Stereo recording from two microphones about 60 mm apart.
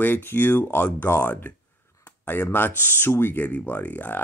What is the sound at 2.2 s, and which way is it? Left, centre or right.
Speech, left.